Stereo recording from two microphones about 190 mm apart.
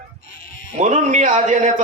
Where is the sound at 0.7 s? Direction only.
40° right (ahead or behind).